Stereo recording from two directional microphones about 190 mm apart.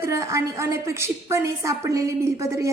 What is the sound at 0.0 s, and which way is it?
A woman's voice, 15° right (ahead or behind).